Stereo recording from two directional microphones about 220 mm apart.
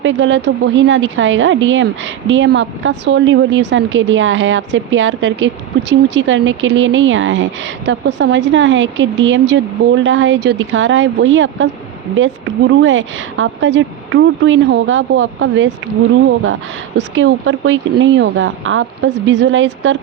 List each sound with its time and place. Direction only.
0.0 s speech: 60° right (ahead or behind)
17.0 s speech: 55° right (ahead or behind)